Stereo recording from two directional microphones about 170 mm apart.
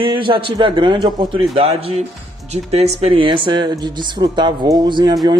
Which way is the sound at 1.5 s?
35° right (ahead or behind).